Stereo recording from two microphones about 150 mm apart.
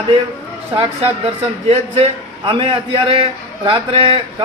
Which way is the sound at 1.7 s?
40° right (ahead or behind).